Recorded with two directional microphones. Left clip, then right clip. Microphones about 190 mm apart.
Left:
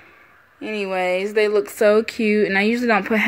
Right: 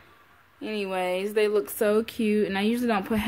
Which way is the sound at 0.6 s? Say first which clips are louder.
Left 6 dB; 15° left (ahead or behind).